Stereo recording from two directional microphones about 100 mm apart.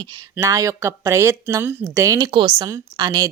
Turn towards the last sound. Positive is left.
turn(degrees=-35)  # may be behind; listen again after turning